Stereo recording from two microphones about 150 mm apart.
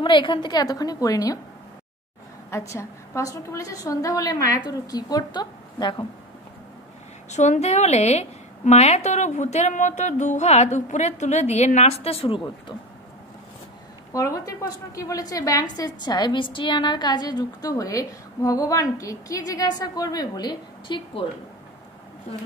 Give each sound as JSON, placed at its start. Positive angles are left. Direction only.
{"t": 0.0, "sound": "a woman's voice", "side_deg": 35}
{"t": 2.7, "sound": "a woman's voice", "side_deg": 20}
{"t": 7.2, "sound": "a woman's voice", "side_deg": 50}
{"t": 14.1, "sound": "a woman's voice", "side_deg": 20}